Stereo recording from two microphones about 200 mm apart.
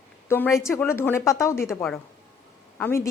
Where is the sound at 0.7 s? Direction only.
10° left (ahead or behind).